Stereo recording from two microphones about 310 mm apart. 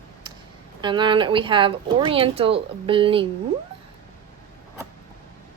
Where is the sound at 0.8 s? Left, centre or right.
Centre.